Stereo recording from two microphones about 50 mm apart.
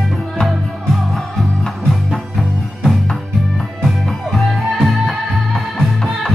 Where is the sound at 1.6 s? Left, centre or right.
Centre.